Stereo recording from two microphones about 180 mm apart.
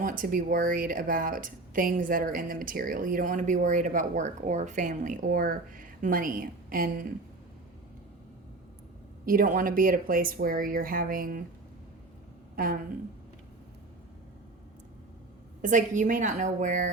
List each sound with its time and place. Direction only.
0.0 s speech: 50° right (ahead or behind)
9.2 s speech: 50° right (ahead or behind)
12.5 s a woman's voice: 50° right (ahead or behind)
15.6 s speech: 45° right (ahead or behind)